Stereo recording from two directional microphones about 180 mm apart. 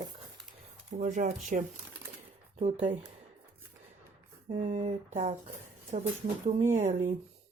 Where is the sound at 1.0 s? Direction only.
45° right (ahead or behind).